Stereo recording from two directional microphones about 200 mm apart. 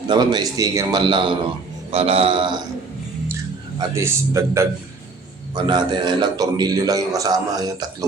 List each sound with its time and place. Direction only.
0.1 s a man's voice: 20° right (ahead or behind)
3.8 s a man's voice: 15° right (ahead or behind)